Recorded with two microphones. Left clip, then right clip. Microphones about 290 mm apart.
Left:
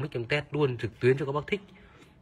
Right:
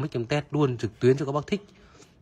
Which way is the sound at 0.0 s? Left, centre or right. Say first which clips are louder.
Right 2 dB; centre.